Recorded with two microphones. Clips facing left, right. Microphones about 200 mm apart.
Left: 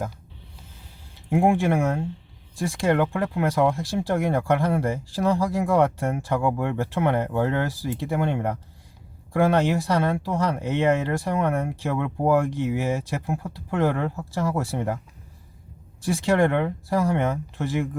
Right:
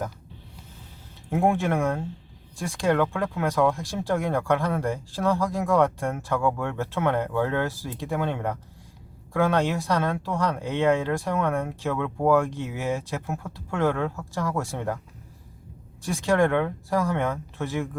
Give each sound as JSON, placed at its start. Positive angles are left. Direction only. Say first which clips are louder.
{"t": 1.3, "sound": "speech", "louder": "left 3 dB", "side_deg": 15}
{"t": 16.2, "sound": "speech", "louder": "even", "side_deg": 15}